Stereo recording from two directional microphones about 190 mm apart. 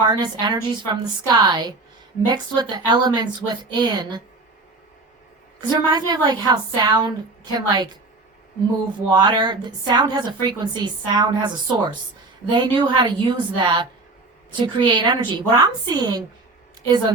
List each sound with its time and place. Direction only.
0.0 s a woman's voice: 25° right (ahead or behind)
5.5 s a woman's voice: 20° right (ahead or behind)
9.1 s a woman's voice: 25° right (ahead or behind)